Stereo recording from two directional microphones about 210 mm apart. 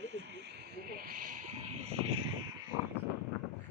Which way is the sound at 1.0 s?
45° right (ahead or behind).